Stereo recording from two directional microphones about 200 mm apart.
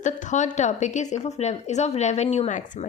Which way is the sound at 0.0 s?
35° left (ahead or behind).